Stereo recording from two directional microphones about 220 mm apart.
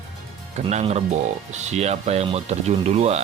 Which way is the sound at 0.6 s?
30° right (ahead or behind).